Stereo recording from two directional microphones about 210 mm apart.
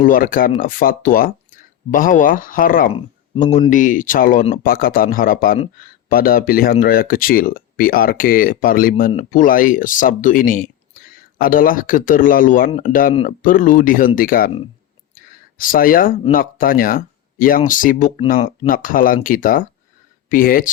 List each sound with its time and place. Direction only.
0.0 s speech: 40° left (ahead or behind)
15.1 s a sound: 40° left (ahead or behind)
16.3 s speech: 40° left (ahead or behind)